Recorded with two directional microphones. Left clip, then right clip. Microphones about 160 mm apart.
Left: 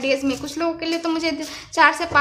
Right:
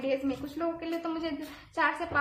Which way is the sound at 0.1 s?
35° left (ahead or behind).